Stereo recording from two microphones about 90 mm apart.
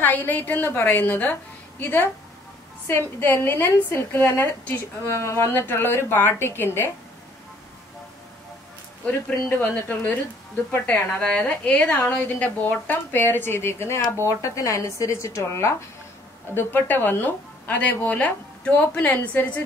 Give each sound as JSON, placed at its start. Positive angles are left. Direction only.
{"t": 0.0, "sound": "a woman's voice", "side_deg": 20}
{"t": 9.6, "sound": "a woman's voice", "side_deg": 15}
{"t": 16.5, "sound": "a woman's voice", "side_deg": 20}